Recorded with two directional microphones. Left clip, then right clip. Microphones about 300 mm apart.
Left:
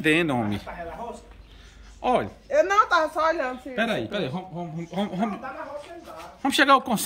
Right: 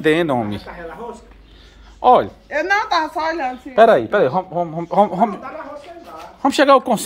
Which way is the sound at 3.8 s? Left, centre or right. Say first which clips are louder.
Right 16 dB; right.